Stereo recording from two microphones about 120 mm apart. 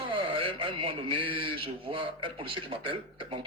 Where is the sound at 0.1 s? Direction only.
50° right (ahead or behind).